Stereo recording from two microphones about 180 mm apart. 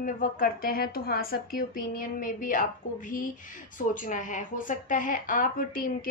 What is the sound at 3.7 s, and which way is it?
Speech, 45° left (ahead or behind).